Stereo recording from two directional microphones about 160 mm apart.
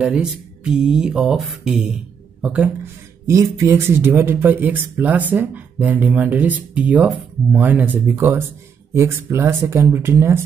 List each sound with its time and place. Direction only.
0.0 s speech: 5° right (ahead or behind)